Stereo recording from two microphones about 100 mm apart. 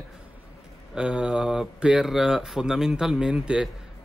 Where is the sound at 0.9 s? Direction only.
10° right (ahead or behind).